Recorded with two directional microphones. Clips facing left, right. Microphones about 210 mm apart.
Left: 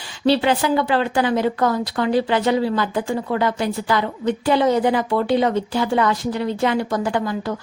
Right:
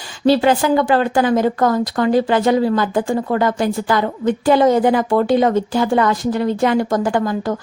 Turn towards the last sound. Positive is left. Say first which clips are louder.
# right 4 dB
turn(degrees=-50)  # may be behind; listen again after turning